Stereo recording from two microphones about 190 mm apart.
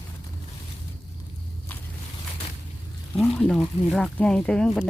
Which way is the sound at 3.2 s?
Centre (ahead or behind).